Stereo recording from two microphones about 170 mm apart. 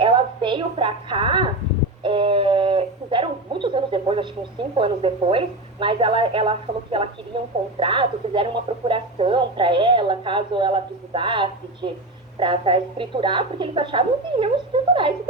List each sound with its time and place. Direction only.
0.0 s a woman's voice: 30° right (ahead or behind)
2.0 s a sound: 30° right (ahead or behind)
4.7 s a woman's voice: 35° right (ahead or behind)